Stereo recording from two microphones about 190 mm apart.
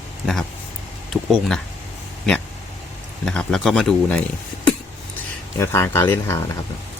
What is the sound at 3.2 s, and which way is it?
Speech, 5° left (ahead or behind).